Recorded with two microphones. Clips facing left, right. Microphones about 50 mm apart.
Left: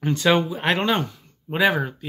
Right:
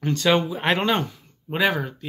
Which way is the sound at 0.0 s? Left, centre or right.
Centre.